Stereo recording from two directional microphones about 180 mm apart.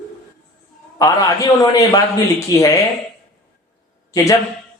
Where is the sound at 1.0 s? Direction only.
20° left (ahead or behind).